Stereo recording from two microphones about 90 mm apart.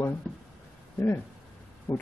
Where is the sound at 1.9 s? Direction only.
35° left (ahead or behind).